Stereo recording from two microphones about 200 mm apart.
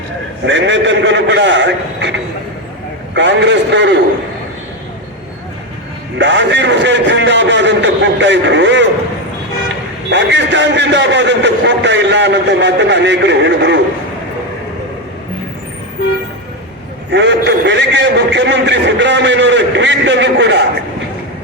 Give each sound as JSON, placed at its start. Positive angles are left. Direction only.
{"t": 0.4, "sound": "a man's voice", "side_deg": -65}
{"t": 6.1, "sound": "a man's voice", "side_deg": -60}
{"t": 10.1, "sound": "a man's voice", "side_deg": -65}
{"t": 17.1, "sound": "a man's voice", "side_deg": -60}